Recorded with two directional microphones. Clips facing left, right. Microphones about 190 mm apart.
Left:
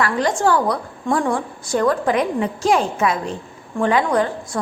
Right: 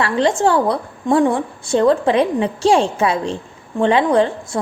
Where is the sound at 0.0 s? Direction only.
25° right (ahead or behind).